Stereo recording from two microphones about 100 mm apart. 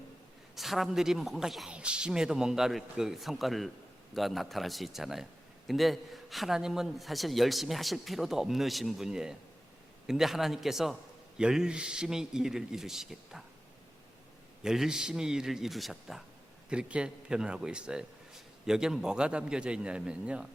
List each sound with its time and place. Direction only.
0.5 s a man's voice: centre (ahead or behind)
14.6 s a man's voice: 5° right (ahead or behind)